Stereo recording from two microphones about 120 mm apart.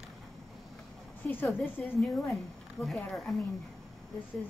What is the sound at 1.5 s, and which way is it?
A woman's voice, centre (ahead or behind).